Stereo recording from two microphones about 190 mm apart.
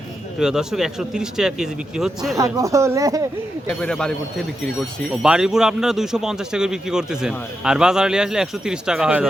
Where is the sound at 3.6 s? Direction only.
5° left (ahead or behind).